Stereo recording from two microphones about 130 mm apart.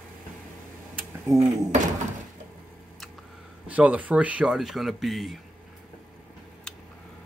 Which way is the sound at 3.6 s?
10° right (ahead or behind).